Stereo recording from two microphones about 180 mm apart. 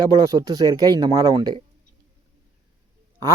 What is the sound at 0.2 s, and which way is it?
Speech, 20° right (ahead or behind).